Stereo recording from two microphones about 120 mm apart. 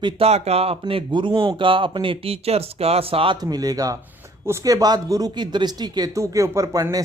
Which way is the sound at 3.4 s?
35° right (ahead or behind).